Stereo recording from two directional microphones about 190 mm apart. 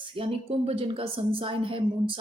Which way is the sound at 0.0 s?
30° right (ahead or behind).